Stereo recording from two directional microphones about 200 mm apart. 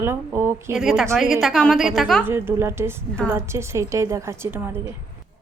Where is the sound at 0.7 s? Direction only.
Centre (ahead or behind).